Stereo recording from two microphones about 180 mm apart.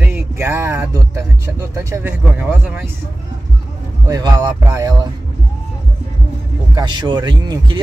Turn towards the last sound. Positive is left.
turn(degrees=-25)  # may be behind; listen again after turning